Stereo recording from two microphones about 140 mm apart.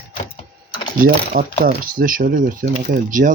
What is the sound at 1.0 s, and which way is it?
Mechanisms, 90° right.